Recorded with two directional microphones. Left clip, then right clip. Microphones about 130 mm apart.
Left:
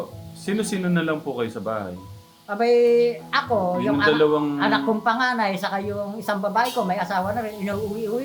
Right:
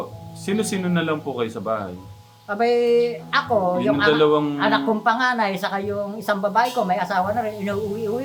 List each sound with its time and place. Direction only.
0.4 s speech: 15° right (ahead or behind)
4.2 s a man's voice: 20° right (ahead or behind)
4.5 s a woman's voice: 5° right (ahead or behind)